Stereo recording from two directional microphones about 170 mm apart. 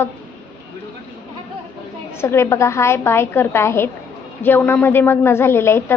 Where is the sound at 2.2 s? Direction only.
15° left (ahead or behind).